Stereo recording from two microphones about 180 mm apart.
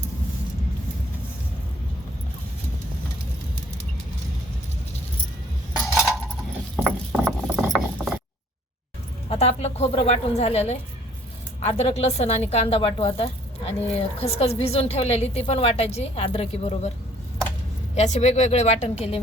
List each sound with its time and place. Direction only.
6.7 s ratchet: 5° right (ahead or behind)
9.3 s a woman's voice: 35° left (ahead or behind)
17.9 s a woman's voice: 40° left (ahead or behind)